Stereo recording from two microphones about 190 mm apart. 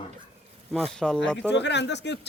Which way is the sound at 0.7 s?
5° left (ahead or behind).